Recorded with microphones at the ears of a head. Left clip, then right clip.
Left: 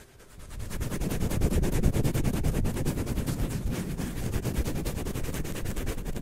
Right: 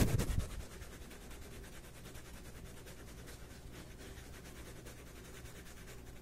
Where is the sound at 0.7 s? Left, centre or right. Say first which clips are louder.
Left 18 dB; left.